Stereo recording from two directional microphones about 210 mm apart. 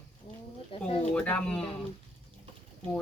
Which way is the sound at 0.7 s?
25° left (ahead or behind).